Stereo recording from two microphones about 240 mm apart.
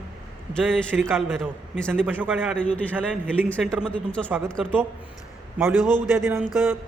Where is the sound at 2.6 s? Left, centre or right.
Centre.